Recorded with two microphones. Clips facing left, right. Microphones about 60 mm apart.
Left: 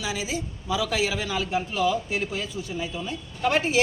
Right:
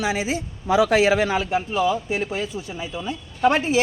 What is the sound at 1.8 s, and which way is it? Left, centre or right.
Speech, right.